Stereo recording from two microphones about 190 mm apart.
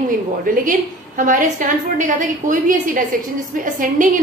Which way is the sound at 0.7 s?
45° right (ahead or behind).